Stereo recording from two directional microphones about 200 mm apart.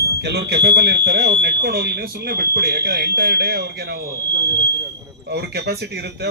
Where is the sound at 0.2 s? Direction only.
55° right (ahead or behind).